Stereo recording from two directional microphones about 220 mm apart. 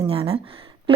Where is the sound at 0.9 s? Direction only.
25° right (ahead or behind).